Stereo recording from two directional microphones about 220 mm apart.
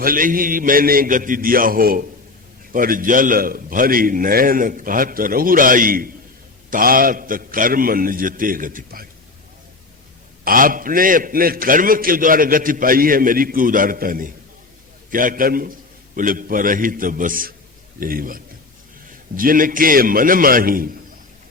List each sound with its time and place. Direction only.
0.0 s a man's voice: 40° right (ahead or behind)
10.4 s a man's voice: 40° right (ahead or behind)